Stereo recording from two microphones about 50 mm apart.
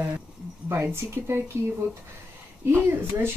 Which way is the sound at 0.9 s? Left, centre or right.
Right.